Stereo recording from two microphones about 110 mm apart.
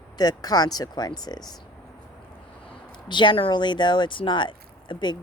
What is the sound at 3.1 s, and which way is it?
Speech, 45° left (ahead or behind).